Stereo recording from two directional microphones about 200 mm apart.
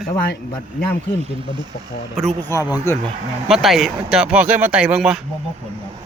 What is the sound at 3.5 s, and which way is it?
A man's voice, centre (ahead or behind).